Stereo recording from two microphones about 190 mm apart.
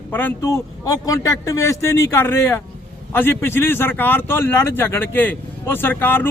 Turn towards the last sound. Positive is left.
turn(degrees=10)  # may be behind; listen again after turning